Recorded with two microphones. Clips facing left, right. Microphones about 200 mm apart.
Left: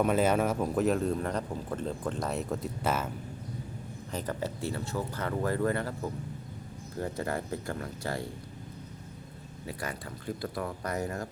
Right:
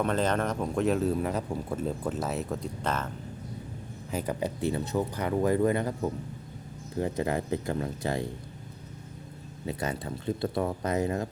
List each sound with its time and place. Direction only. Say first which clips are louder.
0.0 s speech: left 2 dB; 10° left (ahead or behind)
4.1 s speech: right 4 dB; 10° right (ahead or behind)
9.6 s speech: right 6 dB; 25° right (ahead or behind)